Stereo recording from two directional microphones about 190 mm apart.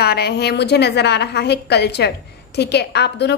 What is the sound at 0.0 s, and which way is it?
A woman's voice, 55° left (ahead or behind).